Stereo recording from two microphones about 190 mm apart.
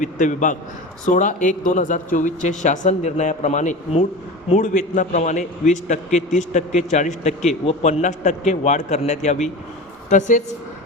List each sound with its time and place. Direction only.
0.0 s a man's voice: 40° left (ahead or behind)